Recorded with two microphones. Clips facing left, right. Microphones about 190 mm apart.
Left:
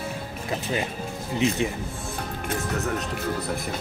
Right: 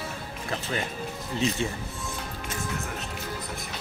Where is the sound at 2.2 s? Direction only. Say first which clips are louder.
Left 9 dB; 50° left (ahead or behind).